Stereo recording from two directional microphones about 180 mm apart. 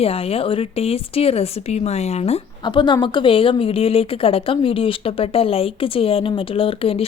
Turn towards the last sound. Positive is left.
turn(degrees=30)  # may be behind; listen again after turning